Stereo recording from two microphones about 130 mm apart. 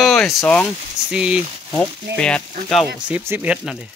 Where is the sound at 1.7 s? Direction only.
10° left (ahead or behind).